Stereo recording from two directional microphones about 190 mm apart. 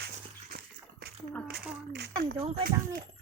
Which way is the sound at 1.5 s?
60° right (ahead or behind).